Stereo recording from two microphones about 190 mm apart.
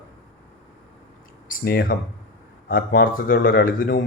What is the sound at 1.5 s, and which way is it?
Speech, 50° left (ahead or behind).